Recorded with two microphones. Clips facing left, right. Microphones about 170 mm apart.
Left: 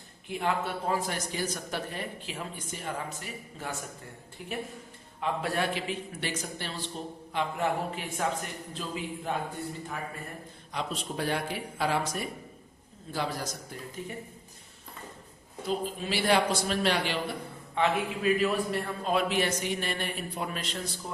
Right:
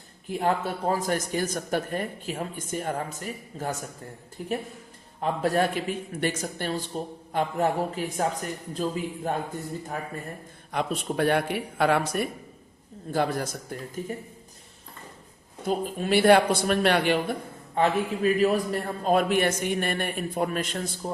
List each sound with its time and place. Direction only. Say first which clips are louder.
0.3 s a man's voice: right 4 dB; 40° right (ahead or behind)
10.7 s a man's voice: right 6 dB; 55° right (ahead or behind)
15.6 s a man's voice: right 4 dB; 50° right (ahead or behind)
17.7 s a man's voice: right 4 dB; 40° right (ahead or behind)